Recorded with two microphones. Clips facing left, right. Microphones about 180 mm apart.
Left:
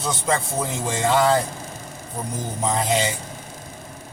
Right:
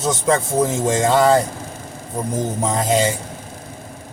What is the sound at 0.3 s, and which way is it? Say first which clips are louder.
Speech: right 7 dB; 45° right (ahead or behind).